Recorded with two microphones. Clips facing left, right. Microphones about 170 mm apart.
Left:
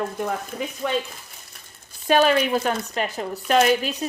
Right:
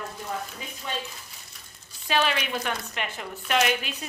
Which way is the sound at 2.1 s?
40° left (ahead or behind).